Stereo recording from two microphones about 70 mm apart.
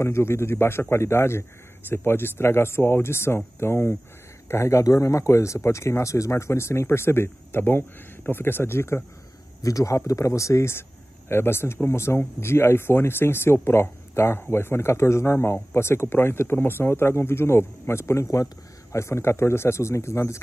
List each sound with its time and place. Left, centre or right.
0.0 s speech: left
9.6 s speech: left